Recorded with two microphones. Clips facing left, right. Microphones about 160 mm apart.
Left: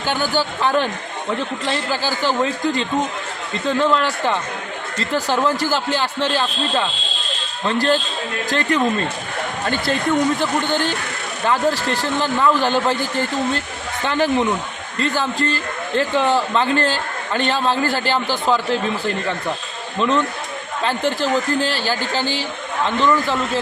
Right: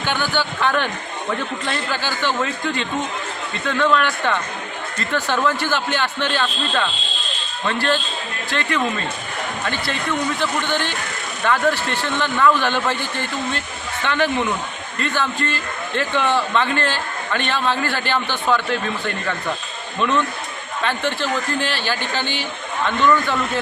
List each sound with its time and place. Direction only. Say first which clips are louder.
0.1 s a man's voice: left 3 dB; 40° left (ahead or behind)
11.4 s a man's voice: left 1 dB; 35° left (ahead or behind)